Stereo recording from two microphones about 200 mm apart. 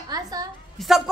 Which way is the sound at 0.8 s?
Centre (ahead or behind).